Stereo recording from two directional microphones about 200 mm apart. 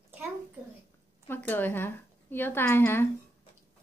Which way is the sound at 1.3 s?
10° left (ahead or behind).